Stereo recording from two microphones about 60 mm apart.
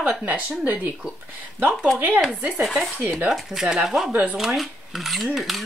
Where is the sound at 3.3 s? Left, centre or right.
Centre.